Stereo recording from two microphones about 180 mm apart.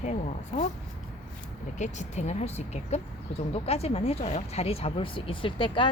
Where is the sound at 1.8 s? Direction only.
40° left (ahead or behind).